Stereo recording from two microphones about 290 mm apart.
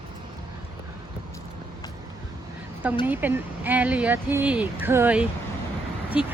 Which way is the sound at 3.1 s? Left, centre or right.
Centre.